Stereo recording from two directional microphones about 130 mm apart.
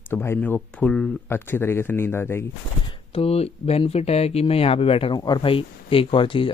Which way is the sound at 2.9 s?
50° left (ahead or behind).